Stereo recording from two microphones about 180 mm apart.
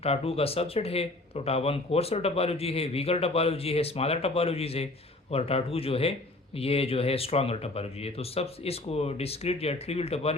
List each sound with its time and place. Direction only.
0.0 s speech: 35° left (ahead or behind)